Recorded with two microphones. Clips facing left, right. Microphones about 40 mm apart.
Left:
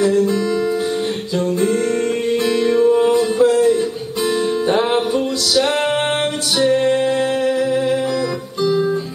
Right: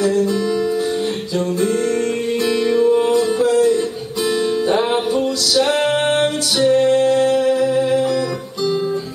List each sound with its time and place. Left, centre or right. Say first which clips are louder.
0.0 s music: left 1 dB; centre
2.4 s music: even; centre
3.1 s music: left 1 dB; left; by 8.0 s centre